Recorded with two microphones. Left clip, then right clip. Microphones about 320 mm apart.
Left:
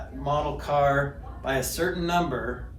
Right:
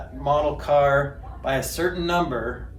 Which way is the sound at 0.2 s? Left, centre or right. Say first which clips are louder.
Right 6 dB; right.